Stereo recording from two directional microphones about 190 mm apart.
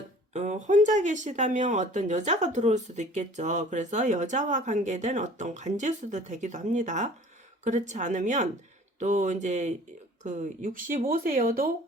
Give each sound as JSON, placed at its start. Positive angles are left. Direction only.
{"t": 0.3, "sound": "speech", "side_deg": -40}